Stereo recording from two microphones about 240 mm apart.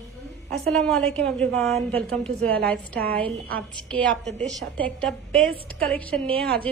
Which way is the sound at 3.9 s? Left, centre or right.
Centre.